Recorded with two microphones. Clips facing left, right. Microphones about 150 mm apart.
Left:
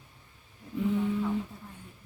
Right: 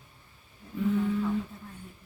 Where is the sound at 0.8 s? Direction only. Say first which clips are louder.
Right 1 dB; 15° left (ahead or behind).